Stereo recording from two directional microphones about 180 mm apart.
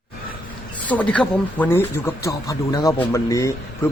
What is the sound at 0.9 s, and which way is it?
A man's voice, 5° left (ahead or behind).